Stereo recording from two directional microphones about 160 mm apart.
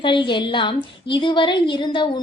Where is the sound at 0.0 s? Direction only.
30° left (ahead or behind).